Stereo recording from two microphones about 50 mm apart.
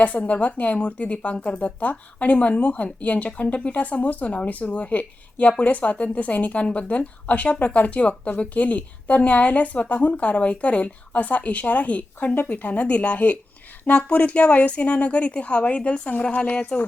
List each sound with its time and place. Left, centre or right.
0.0 s a woman's voice: left